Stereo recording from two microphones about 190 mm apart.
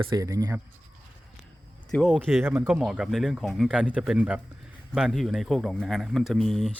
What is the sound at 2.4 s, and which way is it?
Speech, 10° right (ahead or behind).